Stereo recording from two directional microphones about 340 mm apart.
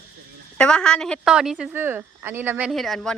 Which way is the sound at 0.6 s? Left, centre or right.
Centre.